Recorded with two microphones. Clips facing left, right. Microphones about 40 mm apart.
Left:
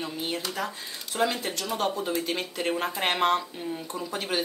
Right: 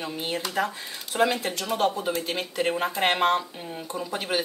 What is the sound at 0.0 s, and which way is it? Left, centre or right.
Speech, right.